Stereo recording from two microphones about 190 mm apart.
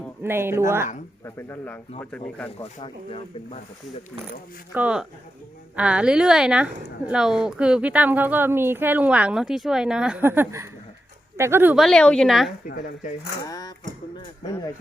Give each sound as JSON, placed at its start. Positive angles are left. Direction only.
{"t": 0.2, "sound": "speech", "side_deg": -10}
{"t": 1.2, "sound": "speech", "side_deg": 15}
{"t": 2.8, "sound": "speech", "side_deg": 30}
{"t": 4.7, "sound": "a woman's voice", "side_deg": -5}
{"t": 12.6, "sound": "speech", "side_deg": 50}
{"t": 13.4, "sound": "speech", "side_deg": 20}